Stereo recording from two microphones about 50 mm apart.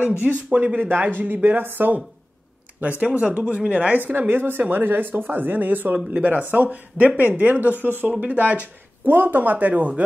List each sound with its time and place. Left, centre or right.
0.2 s speech: right
4.0 s speech: right